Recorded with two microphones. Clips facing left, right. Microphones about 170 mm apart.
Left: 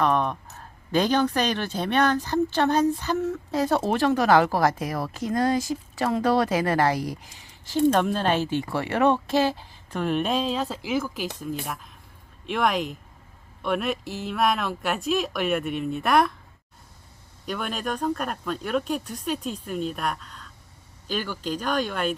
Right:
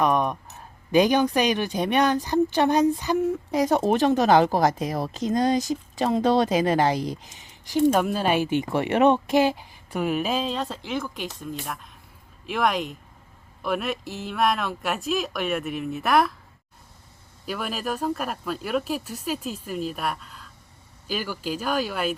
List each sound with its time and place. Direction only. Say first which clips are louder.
0.0 s speech: right 1 dB; 15° right (ahead or behind)
17.4 s speech: even; 5° right (ahead or behind)